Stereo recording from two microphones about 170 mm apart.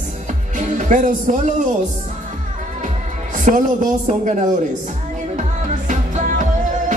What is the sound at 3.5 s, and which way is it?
Speech, 45° right (ahead or behind).